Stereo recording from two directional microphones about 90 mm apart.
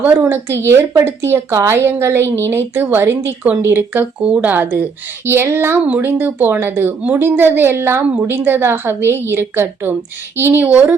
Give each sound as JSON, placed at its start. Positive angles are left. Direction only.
{"t": 0.0, "sound": "speech", "side_deg": -25}